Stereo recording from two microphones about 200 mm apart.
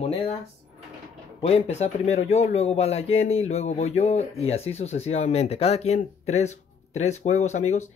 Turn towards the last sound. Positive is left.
turn(degrees=35)  # may be behind; listen again after turning